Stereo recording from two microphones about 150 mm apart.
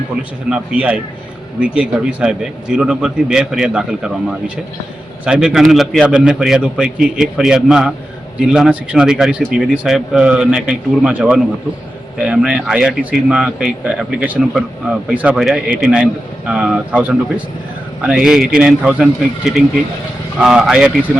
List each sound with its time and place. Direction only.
0.2 s a man's voice: 10° right (ahead or behind)
20.4 s speech: 5° right (ahead or behind)